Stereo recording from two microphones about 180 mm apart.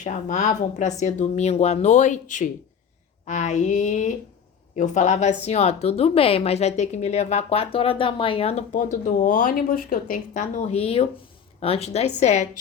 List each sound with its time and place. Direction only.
0.0 s speech: 40° left (ahead or behind)